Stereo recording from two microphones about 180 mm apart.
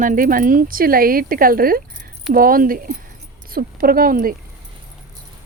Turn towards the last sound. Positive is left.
turn(degrees=-55)  # may be behind; listen again after turning